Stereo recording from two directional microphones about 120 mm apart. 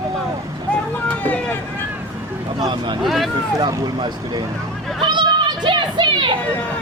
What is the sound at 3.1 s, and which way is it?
Speech, centre (ahead or behind).